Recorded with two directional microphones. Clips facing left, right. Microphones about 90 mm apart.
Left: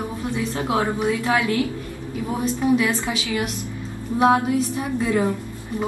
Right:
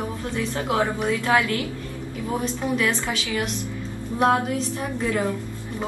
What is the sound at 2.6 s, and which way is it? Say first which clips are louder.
A woman's voice: left 6 dB; 15° left (ahead or behind).